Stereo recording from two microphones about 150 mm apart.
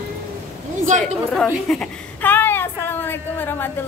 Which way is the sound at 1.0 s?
5° left (ahead or behind).